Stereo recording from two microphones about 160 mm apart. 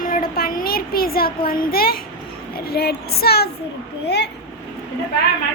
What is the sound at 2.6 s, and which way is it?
Child singing, 85° left.